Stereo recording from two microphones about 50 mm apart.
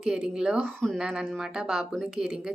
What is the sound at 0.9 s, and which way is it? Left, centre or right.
Speech, centre.